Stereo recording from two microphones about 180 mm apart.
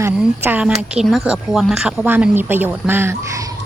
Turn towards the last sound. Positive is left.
turn(degrees=-15)  # may be behind; listen again after turning